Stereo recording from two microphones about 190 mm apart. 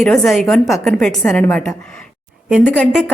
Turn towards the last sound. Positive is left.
turn(degrees=0)  # may be behind; listen again after turning